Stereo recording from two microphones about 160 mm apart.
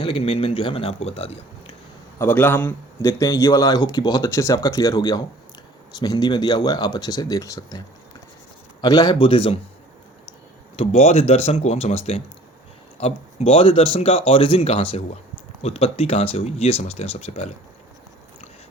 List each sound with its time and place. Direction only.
0.0 s speech: 35° left (ahead or behind)
2.1 s a man's voice: 10° left (ahead or behind)
3.1 s speech: 25° left (ahead or behind)
8.8 s speech: 25° left (ahead or behind)
10.8 s speech: 40° left (ahead or behind)